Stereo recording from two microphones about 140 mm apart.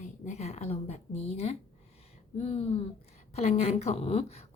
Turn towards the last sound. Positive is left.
turn(degrees=45)  # may be behind; listen again after turning